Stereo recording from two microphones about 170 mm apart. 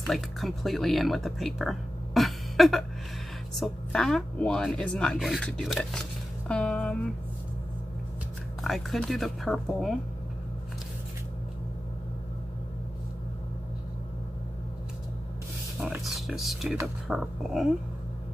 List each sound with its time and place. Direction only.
0.0 s speech: centre (ahead or behind)
8.6 s speech: centre (ahead or behind)
15.8 s speech: centre (ahead or behind)